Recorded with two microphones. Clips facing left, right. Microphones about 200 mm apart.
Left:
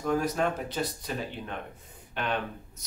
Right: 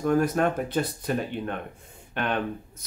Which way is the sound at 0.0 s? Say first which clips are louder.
Right 5 dB; 55° right (ahead or behind).